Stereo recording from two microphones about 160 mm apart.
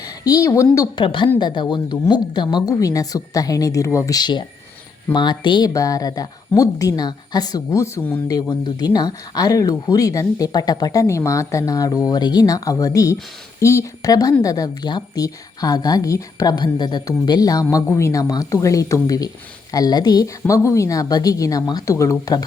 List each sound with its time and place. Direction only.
0.0 s a woman's voice: 25° left (ahead or behind)
1.0 s a woman's voice: 30° left (ahead or behind)